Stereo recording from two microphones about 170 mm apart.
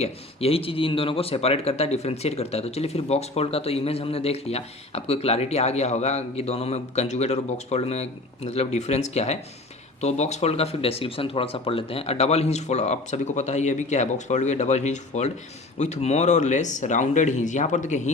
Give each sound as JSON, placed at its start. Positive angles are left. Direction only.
{"t": 0.0, "sound": "speech", "side_deg": 35}